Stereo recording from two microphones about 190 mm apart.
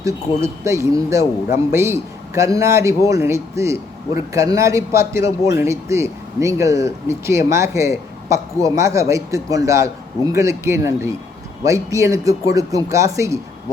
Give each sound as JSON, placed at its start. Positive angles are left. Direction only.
{"t": 0.0, "sound": "speech", "side_deg": -15}